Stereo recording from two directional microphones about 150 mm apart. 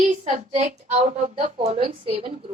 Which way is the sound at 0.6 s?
55° right (ahead or behind).